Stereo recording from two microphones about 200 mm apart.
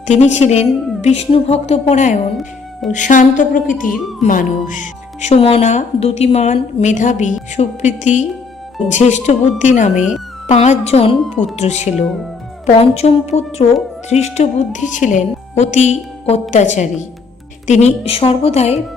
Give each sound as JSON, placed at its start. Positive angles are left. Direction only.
{"t": 0.1, "sound": "speech", "side_deg": 35}
{"t": 9.9, "sound": "speech", "side_deg": -5}
{"t": 10.4, "sound": "speech", "side_deg": 35}
{"t": 11.2, "sound": "speech", "side_deg": 0}
{"t": 11.5, "sound": "speech", "side_deg": 35}